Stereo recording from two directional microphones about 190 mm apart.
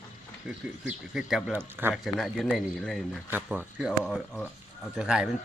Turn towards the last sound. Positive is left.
turn(degrees=-5)  # may be behind; listen again after turning